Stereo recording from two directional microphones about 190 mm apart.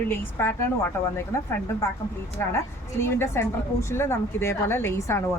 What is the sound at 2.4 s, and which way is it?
A woman's voice, 10° left (ahead or behind).